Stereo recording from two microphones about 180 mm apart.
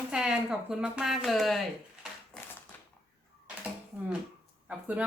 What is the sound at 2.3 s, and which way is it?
Typewriter, 5° left (ahead or behind).